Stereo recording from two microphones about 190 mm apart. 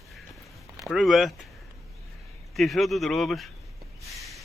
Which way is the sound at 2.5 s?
Centre (ahead or behind).